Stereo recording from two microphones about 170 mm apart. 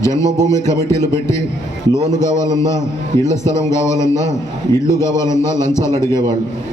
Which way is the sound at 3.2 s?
15° left (ahead or behind).